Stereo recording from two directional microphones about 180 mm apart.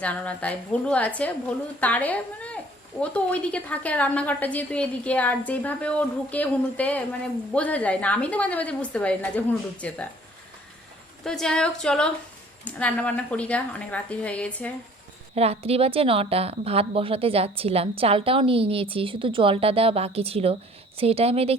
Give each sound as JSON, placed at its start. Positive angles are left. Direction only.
{"t": 0.0, "sound": "a woman's voice", "side_deg": 5}
{"t": 11.2, "sound": "a woman's voice", "side_deg": 0}
{"t": 15.4, "sound": "a woman's voice", "side_deg": -35}